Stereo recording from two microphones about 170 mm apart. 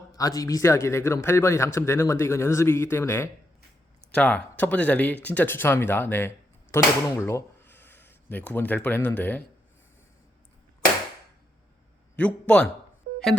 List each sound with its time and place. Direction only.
0.1 s a man's voice: 20° left (ahead or behind)
12.1 s a man's voice: 5° left (ahead or behind)